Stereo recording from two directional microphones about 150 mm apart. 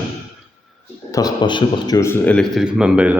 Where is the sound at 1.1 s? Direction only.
25° left (ahead or behind); by 2.4 s 10° left (ahead or behind).